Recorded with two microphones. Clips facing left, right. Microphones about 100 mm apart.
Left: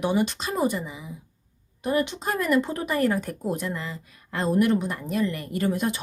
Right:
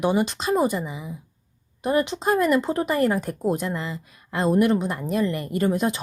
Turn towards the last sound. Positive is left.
turn(degrees=-30)  # may be behind; listen again after turning